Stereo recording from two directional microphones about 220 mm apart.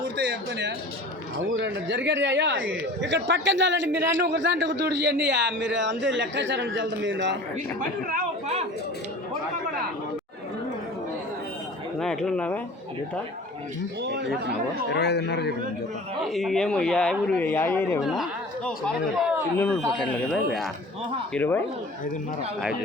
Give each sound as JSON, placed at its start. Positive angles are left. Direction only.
{"t": 0.2, "sound": "speech", "side_deg": -50}
{"t": 7.8, "sound": "speech", "side_deg": -40}
{"t": 11.9, "sound": "speech", "side_deg": 0}
{"t": 14.0, "sound": "speech", "side_deg": -50}
{"t": 14.9, "sound": "speech", "side_deg": 50}
{"t": 16.2, "sound": "speech", "side_deg": 0}
{"t": 18.0, "sound": "speech", "side_deg": 0}